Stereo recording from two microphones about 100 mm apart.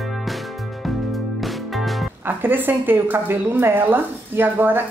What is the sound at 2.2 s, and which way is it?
A woman's voice, 20° right (ahead or behind).